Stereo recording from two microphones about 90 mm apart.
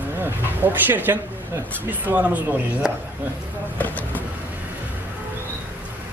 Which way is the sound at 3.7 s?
20° left (ahead or behind).